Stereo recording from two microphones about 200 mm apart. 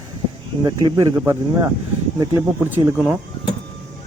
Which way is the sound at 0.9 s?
20° right (ahead or behind).